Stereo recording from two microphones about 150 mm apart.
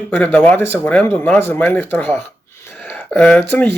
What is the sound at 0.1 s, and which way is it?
Speech, 10° left (ahead or behind).